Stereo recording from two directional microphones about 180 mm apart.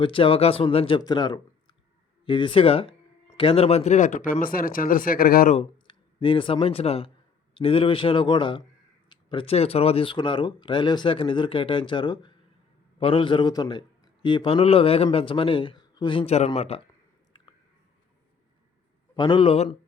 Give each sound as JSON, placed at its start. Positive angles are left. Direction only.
{"t": 0.0, "sound": "a man's voice", "side_deg": 30}
{"t": 5.5, "sound": "a man's voice", "side_deg": 30}
{"t": 17.3, "sound": "a sound", "side_deg": 25}
{"t": 19.1, "sound": "a man's voice", "side_deg": 25}